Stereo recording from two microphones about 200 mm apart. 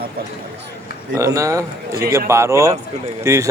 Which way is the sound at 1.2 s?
15° right (ahead or behind).